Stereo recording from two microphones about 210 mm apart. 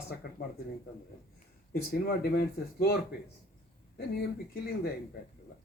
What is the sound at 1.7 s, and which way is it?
Speech, 50° left (ahead or behind).